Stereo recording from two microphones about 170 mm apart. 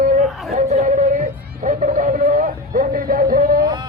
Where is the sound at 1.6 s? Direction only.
50° right (ahead or behind).